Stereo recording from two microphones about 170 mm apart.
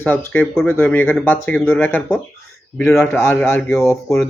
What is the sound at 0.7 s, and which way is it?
Speech, 10° left (ahead or behind).